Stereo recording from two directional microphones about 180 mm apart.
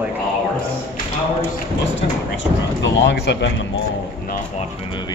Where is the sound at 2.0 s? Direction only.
85° left.